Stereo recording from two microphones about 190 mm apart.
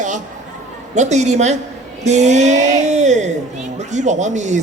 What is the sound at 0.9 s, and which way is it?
Speech, 35° right (ahead or behind).